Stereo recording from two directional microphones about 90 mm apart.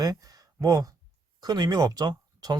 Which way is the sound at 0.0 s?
45° right (ahead or behind).